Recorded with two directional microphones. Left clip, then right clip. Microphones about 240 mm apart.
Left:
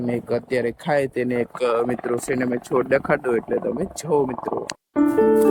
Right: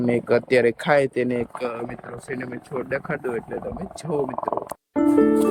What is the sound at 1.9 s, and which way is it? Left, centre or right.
Speech, centre.